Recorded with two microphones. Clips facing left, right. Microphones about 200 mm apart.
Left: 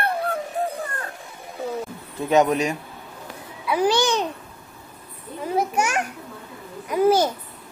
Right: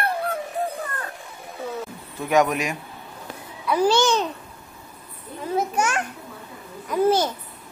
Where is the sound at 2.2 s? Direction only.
20° left (ahead or behind).